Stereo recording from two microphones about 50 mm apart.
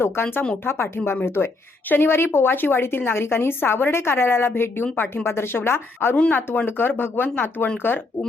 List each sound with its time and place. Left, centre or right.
0.0 s a woman's voice: left